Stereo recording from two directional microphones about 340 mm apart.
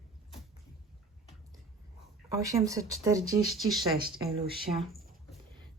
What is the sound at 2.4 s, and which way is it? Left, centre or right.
A woman's voice, centre.